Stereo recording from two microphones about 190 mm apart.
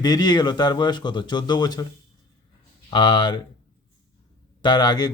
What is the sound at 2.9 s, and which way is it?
Speech, 25° left (ahead or behind).